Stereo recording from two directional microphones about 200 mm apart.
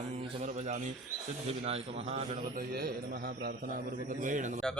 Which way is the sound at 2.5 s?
50° right (ahead or behind).